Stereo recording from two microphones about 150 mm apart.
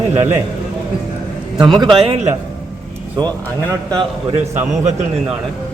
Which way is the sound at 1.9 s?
40° right (ahead or behind).